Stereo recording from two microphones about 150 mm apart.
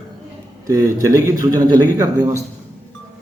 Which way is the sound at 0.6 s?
20° right (ahead or behind).